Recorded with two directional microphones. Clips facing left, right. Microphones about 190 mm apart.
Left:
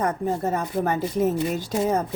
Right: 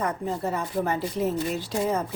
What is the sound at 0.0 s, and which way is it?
Speech, 45° left (ahead or behind).